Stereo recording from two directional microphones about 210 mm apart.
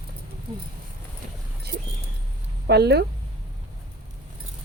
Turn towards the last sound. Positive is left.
turn(degrees=-50)  # may be behind; listen again after turning